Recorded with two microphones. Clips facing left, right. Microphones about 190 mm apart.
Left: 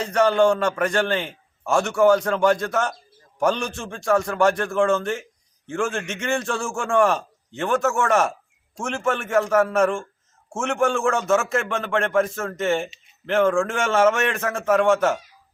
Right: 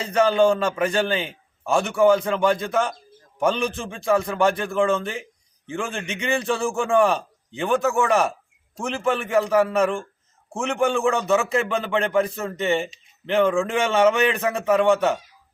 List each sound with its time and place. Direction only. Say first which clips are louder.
0.1 s a man's voice: even; 5° right (ahead or behind)